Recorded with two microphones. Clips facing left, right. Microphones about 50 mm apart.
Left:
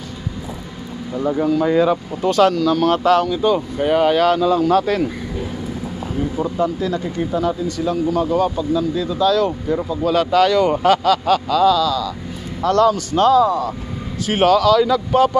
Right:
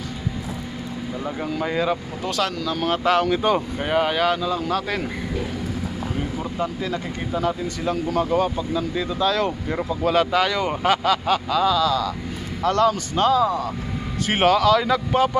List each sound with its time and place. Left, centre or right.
1.3 s speech: centre
1.8 s speech: centre
2.5 s speech: centre
3.3 s speech: right
3.7 s speech: centre
6.6 s speech: right
10.3 s speech: centre
11.8 s speech: right
12.6 s speech: right